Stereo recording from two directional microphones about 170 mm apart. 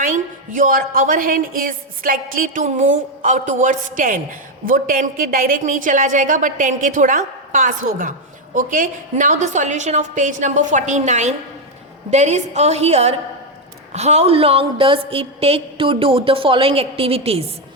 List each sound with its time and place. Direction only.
0.0 s a woman's voice: 50° right (ahead or behind)